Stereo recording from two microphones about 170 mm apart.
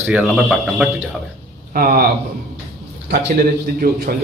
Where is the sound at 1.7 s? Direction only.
55° right (ahead or behind).